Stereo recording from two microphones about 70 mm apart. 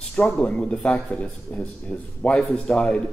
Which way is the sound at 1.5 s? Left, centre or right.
Centre.